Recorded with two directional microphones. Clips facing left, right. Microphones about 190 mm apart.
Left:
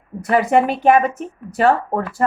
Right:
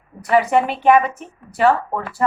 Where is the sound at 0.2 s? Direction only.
45° left (ahead or behind).